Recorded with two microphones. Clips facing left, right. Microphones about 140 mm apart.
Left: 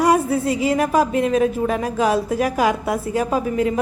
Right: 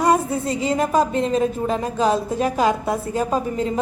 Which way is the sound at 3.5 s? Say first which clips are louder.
Left 3 dB; 30° right (ahead or behind).